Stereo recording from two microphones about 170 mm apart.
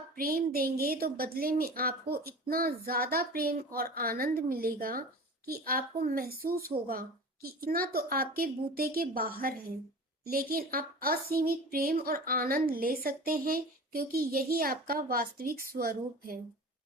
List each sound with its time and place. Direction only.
0.2 s speech: 60° right (ahead or behind)